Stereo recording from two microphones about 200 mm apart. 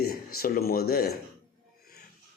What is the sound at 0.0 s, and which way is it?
Speech, 50° left (ahead or behind).